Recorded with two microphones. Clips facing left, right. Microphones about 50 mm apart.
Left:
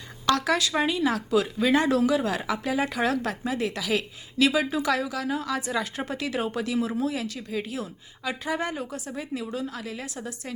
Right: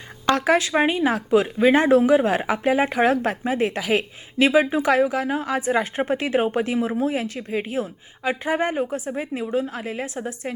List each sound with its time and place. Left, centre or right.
0.3 s speech: right